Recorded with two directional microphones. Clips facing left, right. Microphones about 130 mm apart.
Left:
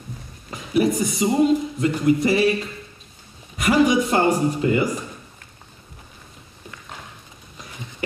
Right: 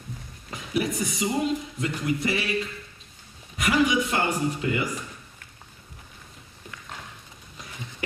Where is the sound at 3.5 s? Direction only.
35° left (ahead or behind).